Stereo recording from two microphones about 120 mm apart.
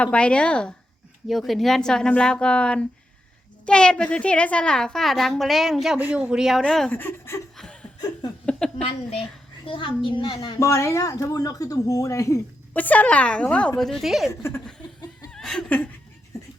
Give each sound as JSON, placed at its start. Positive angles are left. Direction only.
{"t": 0.0, "sound": "a woman's voice", "side_deg": 10}
{"t": 6.9, "sound": "speech", "side_deg": 20}
{"t": 7.5, "sound": "chuckle", "side_deg": 5}
{"t": 8.4, "sound": "a sound", "side_deg": 5}
{"t": 9.6, "sound": "speech", "side_deg": 45}
{"t": 10.6, "sound": "speech", "side_deg": 25}
{"t": 12.7, "sound": "speech", "side_deg": 15}
{"t": 14.3, "sound": "speech", "side_deg": 20}
{"t": 15.3, "sound": "snicker", "side_deg": 5}